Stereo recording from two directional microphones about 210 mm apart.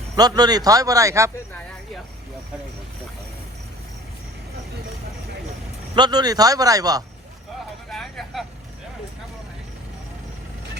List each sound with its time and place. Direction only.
0.2 s speech: 20° right (ahead or behind)
6.0 s speech: 20° right (ahead or behind)
7.9 s vehicle: centre (ahead or behind)